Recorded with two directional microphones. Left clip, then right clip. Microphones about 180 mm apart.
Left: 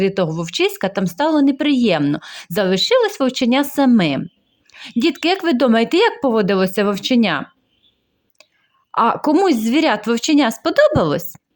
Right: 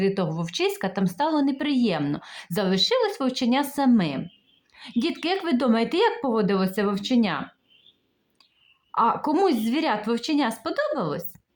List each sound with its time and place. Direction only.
0.0 s speech: 30° left (ahead or behind)
8.9 s speech: 35° left (ahead or behind)